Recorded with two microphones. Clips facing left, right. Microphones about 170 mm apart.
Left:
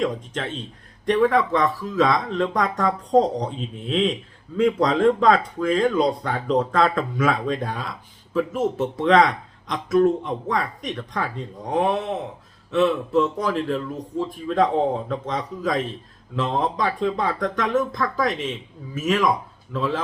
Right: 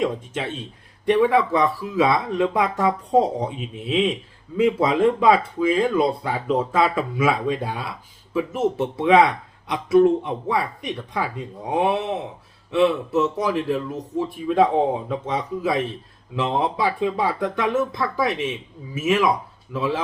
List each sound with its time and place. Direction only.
1.0 s speech: 10° right (ahead or behind)